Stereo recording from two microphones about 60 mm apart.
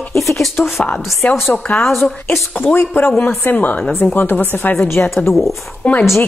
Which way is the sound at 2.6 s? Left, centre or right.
Left.